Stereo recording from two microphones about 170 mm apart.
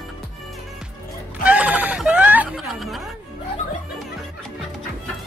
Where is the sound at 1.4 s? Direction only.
10° right (ahead or behind).